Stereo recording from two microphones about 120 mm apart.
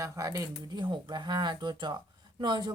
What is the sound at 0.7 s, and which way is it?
Speech, 40° right (ahead or behind).